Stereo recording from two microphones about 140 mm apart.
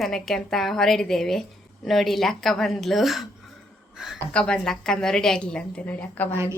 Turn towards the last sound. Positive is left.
turn(degrees=-20)  # may be behind; listen again after turning